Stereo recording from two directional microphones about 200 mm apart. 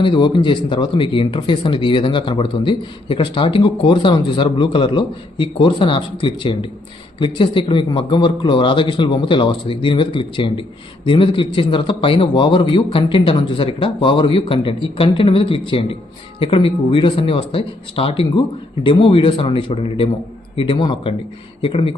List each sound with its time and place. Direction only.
0.0 s speech: 25° left (ahead or behind)